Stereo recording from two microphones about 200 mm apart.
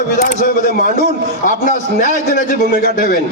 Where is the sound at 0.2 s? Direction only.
40° left (ahead or behind).